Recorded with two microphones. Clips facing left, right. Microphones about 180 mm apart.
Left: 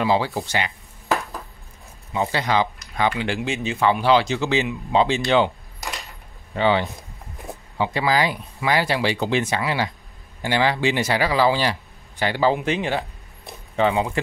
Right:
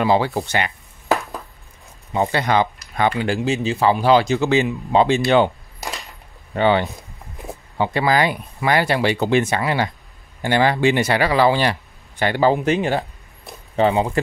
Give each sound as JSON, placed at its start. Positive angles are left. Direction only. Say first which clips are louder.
{"t": 0.0, "sound": "speech", "louder": "right 3 dB", "side_deg": -55}
{"t": 2.3, "sound": "speech", "louder": "right 2 dB", "side_deg": -55}
{"t": 6.5, "sound": "speech", "louder": "right 3 dB", "side_deg": -55}
{"t": 13.7, "sound": "speech", "louder": "right 3 dB", "side_deg": -35}